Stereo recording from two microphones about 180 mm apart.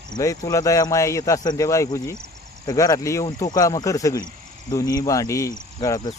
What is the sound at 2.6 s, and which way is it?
Cricket, 20° left (ahead or behind).